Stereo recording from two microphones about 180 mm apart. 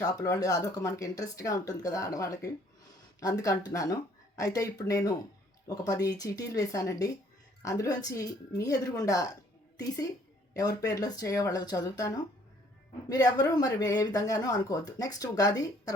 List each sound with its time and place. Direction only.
0.0 s speech: 20° left (ahead or behind)
10.5 s speech: 20° left (ahead or behind)